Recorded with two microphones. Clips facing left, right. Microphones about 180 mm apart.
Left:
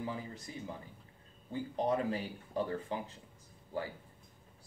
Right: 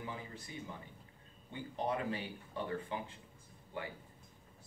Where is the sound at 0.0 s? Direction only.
35° left (ahead or behind).